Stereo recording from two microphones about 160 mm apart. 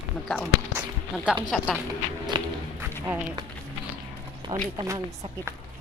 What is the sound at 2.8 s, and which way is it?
Run, 15° right (ahead or behind).